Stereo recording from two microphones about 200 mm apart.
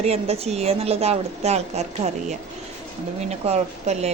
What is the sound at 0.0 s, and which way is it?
A woman's voice, 30° right (ahead or behind).